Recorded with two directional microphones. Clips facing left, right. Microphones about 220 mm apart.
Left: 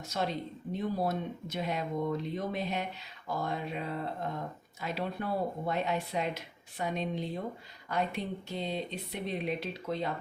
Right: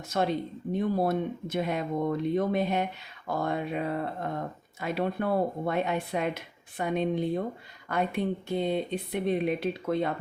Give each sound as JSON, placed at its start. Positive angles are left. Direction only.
{"t": 0.1, "sound": "speech", "side_deg": -55}